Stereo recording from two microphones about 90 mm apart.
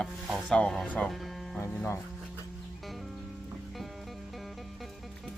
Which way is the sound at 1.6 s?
30° left (ahead or behind).